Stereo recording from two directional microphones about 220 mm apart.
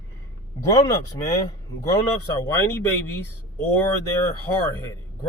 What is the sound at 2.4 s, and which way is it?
Speech, 10° left (ahead or behind).